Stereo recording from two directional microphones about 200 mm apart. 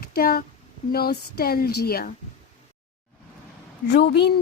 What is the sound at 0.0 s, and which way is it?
A woman's voice, 50° left (ahead or behind).